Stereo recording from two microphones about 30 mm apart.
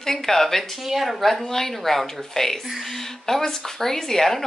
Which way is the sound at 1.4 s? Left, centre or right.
Centre.